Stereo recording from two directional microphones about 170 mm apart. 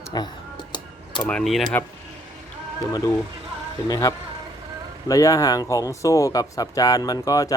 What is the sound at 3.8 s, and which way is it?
Speech, 20° left (ahead or behind).